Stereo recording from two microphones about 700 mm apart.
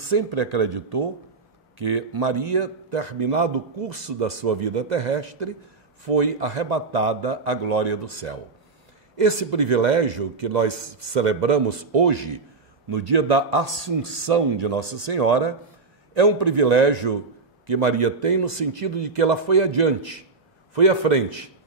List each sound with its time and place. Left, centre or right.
0.0 s a man's voice: right